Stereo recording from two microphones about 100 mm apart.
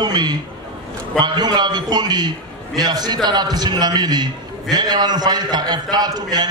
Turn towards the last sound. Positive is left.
turn(degrees=-40)  # may be behind; listen again after turning